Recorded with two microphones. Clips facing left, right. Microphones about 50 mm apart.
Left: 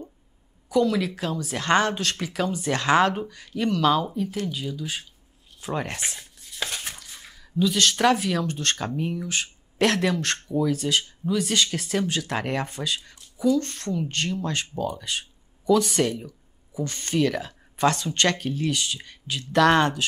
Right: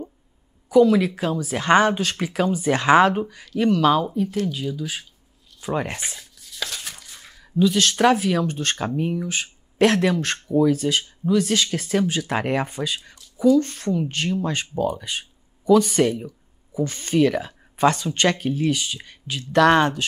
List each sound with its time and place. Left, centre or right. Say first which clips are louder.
0.7 s speech: right 6 dB; centre
6.3 s a sound: even; left
7.0 s speech: even; centre